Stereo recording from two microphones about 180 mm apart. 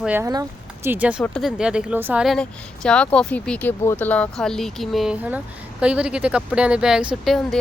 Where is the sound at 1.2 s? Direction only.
5° left (ahead or behind).